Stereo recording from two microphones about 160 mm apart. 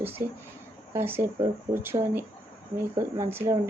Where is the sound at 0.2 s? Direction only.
15° right (ahead or behind).